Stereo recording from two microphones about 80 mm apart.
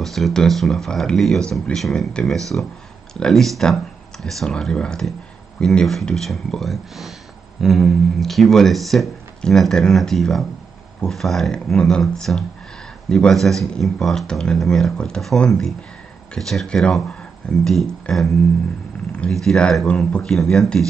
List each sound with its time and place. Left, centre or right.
0.0 s speech: centre
19.4 s speech: centre